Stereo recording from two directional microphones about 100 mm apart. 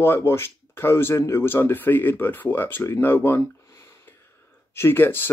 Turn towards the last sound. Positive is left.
turn(degrees=20)  # may be behind; listen again after turning